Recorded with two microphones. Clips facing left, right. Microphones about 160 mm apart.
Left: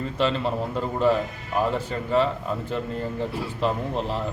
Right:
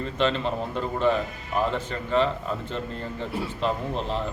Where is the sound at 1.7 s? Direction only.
5° left (ahead or behind).